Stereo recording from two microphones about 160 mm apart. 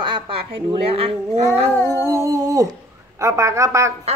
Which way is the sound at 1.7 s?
10° left (ahead or behind).